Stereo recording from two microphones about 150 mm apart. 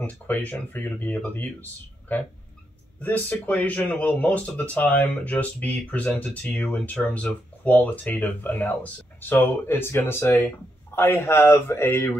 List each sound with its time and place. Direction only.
0.0 s speech: 10° left (ahead or behind)